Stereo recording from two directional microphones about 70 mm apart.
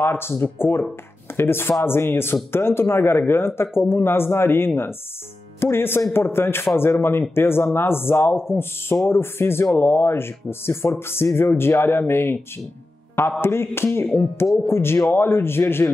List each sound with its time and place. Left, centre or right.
0.0 s a man's voice: left
13.4 s a man's voice: left